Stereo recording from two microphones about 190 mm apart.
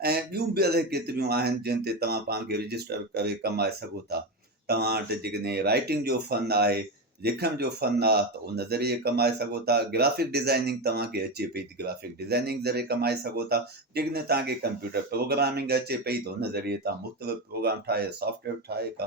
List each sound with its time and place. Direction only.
0.0 s speech: 55° right (ahead or behind)
4.7 s speech: 55° right (ahead or behind)